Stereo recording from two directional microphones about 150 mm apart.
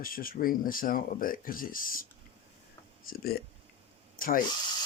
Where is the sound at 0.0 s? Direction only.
70° left (ahead or behind).